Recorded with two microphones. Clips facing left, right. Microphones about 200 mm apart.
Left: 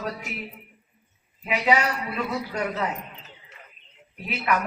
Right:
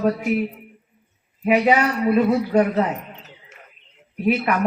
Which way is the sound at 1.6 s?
50° right (ahead or behind).